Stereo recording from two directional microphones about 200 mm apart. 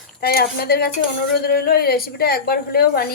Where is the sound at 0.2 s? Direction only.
50° left (ahead or behind).